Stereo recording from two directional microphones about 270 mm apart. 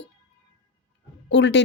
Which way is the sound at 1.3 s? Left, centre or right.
Left.